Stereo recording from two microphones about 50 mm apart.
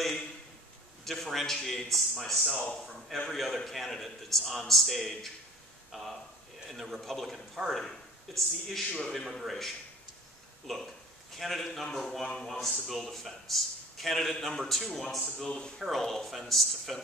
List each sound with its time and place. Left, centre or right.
1.0 s a man's voice: centre
9.4 s a man's voice: centre
10.7 s a man's voice: centre
15.9 s a man's voice: centre